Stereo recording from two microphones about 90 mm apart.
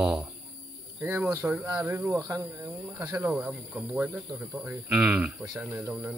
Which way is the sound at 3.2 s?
15° right (ahead or behind).